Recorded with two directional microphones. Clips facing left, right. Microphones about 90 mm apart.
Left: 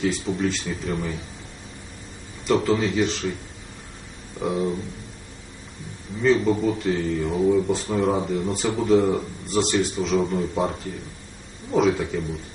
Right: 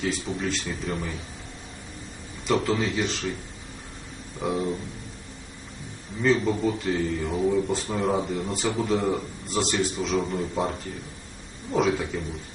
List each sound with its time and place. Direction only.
0.0 s speech: centre (ahead or behind)
2.4 s speech: centre (ahead or behind)
4.4 s speech: centre (ahead or behind)
6.2 s speech: centre (ahead or behind)
11.7 s speech: centre (ahead or behind)